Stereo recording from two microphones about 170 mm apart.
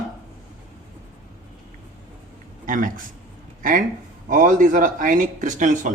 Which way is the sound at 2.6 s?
50° right (ahead or behind).